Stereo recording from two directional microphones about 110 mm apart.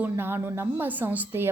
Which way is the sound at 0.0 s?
20° right (ahead or behind).